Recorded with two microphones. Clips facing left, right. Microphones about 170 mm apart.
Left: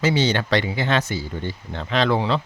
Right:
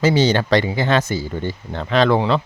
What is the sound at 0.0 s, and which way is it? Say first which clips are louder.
Speech: right 4 dB; 40° right (ahead or behind).